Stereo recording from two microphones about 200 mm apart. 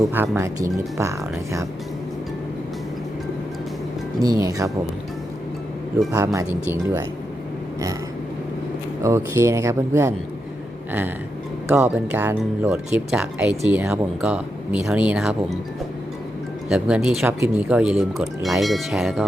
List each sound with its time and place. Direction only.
0.0 s speech: 10° right (ahead or behind)
4.2 s speech: 20° right (ahead or behind)
6.1 s speech: 15° right (ahead or behind)
9.0 s speech: 15° right (ahead or behind)
11.7 s speech: 10° right (ahead or behind)
16.6 s speech: 5° right (ahead or behind)